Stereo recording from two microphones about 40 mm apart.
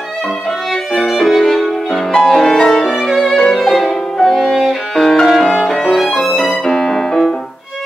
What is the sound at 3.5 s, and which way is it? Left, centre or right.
Violin, centre.